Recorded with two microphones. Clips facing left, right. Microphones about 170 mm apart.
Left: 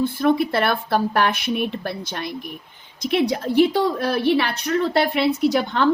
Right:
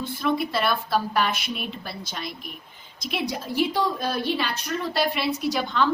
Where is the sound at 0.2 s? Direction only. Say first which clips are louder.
Left 3 dB; 55° left (ahead or behind).